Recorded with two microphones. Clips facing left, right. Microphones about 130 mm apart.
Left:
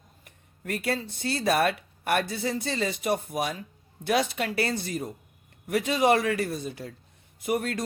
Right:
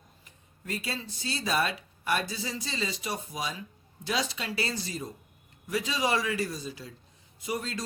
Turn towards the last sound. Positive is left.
turn(degrees=60)  # may be behind; listen again after turning